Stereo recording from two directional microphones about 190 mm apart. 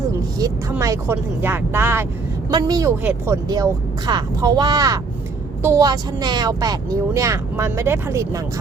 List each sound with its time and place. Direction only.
0.3 s speech: 20° right (ahead or behind)
3.0 s speech: 10° right (ahead or behind)
3.5 s speech: 20° right (ahead or behind)